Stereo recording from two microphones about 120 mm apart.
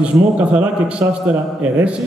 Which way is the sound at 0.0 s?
10° right (ahead or behind).